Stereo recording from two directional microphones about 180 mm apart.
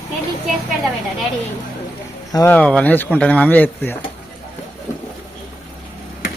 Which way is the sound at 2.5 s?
5° left (ahead or behind).